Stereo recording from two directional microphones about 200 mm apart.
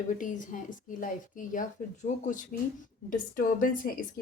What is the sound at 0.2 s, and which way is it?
A woman's voice, 40° left (ahead or behind).